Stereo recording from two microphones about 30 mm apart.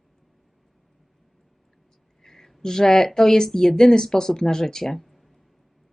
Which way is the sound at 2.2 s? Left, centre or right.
Centre.